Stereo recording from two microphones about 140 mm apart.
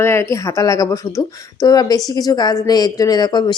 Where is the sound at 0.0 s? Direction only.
20° left (ahead or behind).